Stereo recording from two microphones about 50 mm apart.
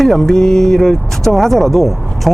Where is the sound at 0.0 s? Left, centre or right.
Centre.